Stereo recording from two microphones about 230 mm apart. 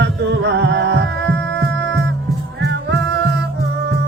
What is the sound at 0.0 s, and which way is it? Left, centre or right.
Music, right.